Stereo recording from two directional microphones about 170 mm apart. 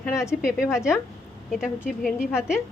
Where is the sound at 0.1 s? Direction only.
15° left (ahead or behind).